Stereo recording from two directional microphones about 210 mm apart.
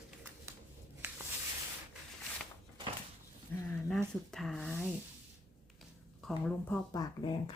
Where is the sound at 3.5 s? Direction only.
10° left (ahead or behind).